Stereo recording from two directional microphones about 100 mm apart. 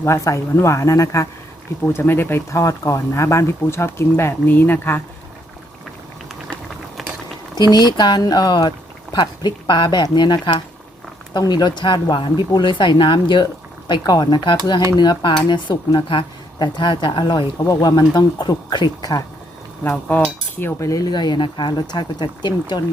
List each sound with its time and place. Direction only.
0.0 s speech: 30° left (ahead or behind)
1.9 s speech: 20° left (ahead or behind)
7.7 s cutlery: 45° left (ahead or behind)
17.7 s cutlery: 40° left (ahead or behind)
19.8 s cutlery: 15° left (ahead or behind); by 22.8 s 45° left (ahead or behind)